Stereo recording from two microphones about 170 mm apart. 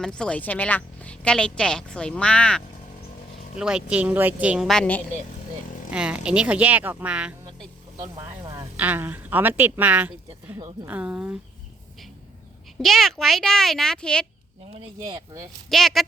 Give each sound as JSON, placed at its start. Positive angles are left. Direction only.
{"t": 0.0, "sound": "a woman's voice", "side_deg": 5}
{"t": 3.6, "sound": "a woman's voice", "side_deg": -5}
{"t": 5.9, "sound": "speech", "side_deg": -5}
{"t": 8.2, "sound": "a sound", "side_deg": -20}
{"t": 8.7, "sound": "speech", "side_deg": -10}
{"t": 12.8, "sound": "a woman's voice", "side_deg": 0}
{"t": 15.0, "sound": "speech", "side_deg": -25}
{"t": 15.7, "sound": "a woman's voice", "side_deg": 0}